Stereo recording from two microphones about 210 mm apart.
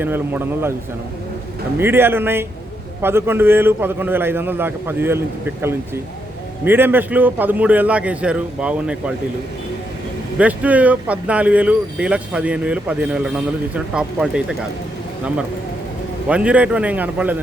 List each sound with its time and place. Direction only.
0.0 s a man's voice: 10° right (ahead or behind)
1.8 s a man's voice: 10° right (ahead or behind)
6.7 s a man's voice: 10° right (ahead or behind)
10.3 s speech: 5° right (ahead or behind)
16.3 s speech: 5° right (ahead or behind)